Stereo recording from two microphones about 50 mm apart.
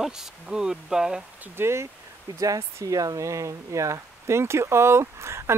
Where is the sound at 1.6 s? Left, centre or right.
Right.